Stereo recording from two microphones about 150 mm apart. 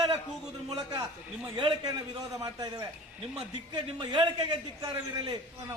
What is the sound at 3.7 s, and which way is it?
A man's voice, 30° right (ahead or behind).